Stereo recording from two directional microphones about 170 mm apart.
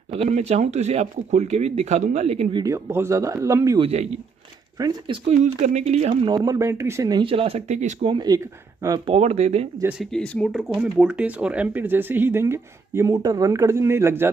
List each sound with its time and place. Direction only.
0.1 s speech: 35° right (ahead or behind)
2.5 s speech: 20° right (ahead or behind)
3.8 s speech: 40° right (ahead or behind)
4.7 s speech: 25° right (ahead or behind)
5.4 s speech: 45° right (ahead or behind)
6.2 s speech: 20° right (ahead or behind); by 8.1 s 40° right (ahead or behind)
8.1 s speech: 25° right (ahead or behind)
9.1 s speech: 40° right (ahead or behind)
9.8 s speech: centre (ahead or behind)